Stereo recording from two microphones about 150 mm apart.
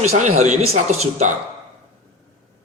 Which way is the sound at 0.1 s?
50° right (ahead or behind).